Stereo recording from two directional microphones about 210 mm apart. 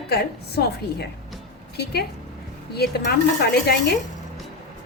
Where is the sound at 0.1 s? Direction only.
50° left (ahead or behind).